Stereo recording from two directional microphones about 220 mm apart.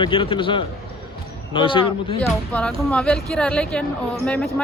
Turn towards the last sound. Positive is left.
turn(degrees=5)  # may be behind; listen again after turning